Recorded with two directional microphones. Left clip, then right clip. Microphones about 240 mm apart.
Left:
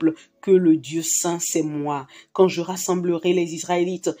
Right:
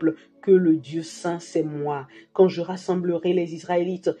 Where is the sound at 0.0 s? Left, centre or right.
Left.